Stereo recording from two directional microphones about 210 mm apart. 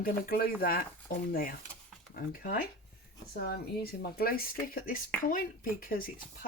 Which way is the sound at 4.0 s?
45° left (ahead or behind).